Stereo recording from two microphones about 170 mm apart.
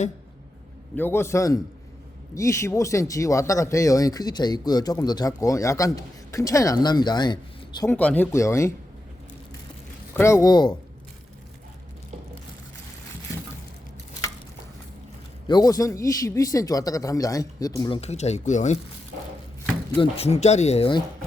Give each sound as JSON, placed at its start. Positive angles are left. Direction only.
{"t": 0.9, "sound": "speech", "side_deg": 15}
{"t": 7.9, "sound": "speech", "side_deg": 10}
{"t": 10.2, "sound": "speech", "side_deg": 15}
{"t": 15.4, "sound": "speech", "side_deg": 25}
{"t": 18.0, "sound": "speech", "side_deg": 40}
{"t": 20.0, "sound": "speech", "side_deg": 35}